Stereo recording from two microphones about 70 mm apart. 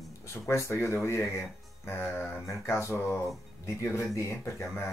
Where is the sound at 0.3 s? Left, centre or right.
Left.